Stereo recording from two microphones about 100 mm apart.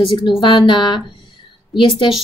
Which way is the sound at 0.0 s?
55° left (ahead or behind).